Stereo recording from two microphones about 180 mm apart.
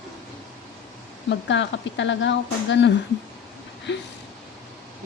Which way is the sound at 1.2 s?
85° left.